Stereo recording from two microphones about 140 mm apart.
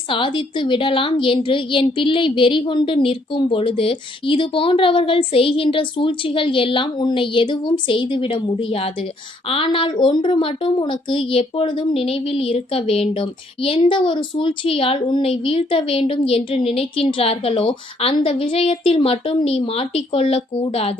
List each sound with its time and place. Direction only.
0.1 s speech: 35° left (ahead or behind)